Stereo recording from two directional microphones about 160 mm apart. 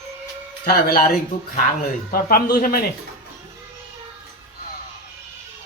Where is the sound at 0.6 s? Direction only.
70° left (ahead or behind).